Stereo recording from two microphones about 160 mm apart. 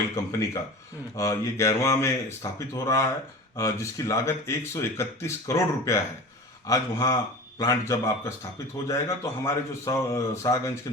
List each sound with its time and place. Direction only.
0.3 s speech: 20° left (ahead or behind)